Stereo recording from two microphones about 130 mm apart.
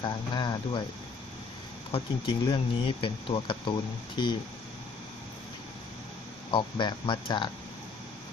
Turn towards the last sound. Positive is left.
turn(degrees=35)  # may be behind; listen again after turning